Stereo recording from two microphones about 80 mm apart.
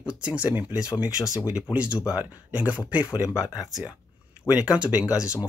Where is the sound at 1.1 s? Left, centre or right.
Left.